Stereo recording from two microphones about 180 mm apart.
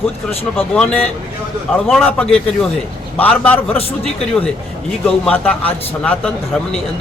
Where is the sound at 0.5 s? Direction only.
5° left (ahead or behind).